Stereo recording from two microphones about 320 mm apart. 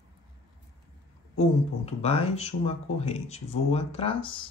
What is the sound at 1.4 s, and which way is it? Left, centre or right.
Speech, centre.